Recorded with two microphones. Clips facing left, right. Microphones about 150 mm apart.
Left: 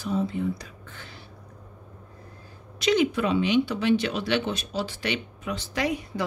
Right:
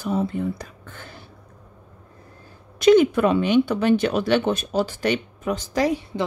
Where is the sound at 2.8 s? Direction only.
50° right (ahead or behind).